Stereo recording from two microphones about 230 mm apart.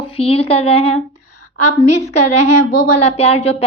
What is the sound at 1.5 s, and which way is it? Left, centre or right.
Speech, left.